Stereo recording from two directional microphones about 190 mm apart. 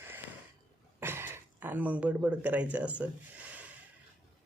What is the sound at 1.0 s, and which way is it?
Speech, 10° right (ahead or behind).